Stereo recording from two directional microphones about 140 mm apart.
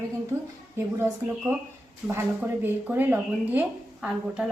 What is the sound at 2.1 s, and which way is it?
Speech, 15° right (ahead or behind).